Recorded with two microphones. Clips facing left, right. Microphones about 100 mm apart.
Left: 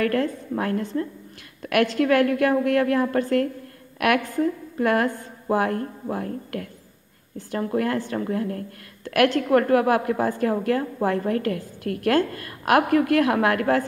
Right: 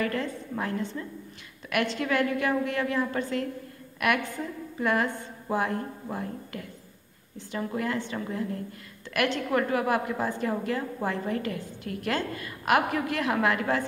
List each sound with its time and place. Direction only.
0.0 s a woman's voice: 60° left (ahead or behind)
4.7 s a woman's voice: 55° left (ahead or behind)